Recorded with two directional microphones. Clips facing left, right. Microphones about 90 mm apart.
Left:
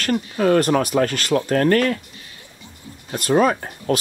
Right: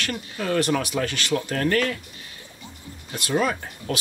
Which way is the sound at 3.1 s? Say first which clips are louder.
Left 7 dB; 45° left (ahead or behind).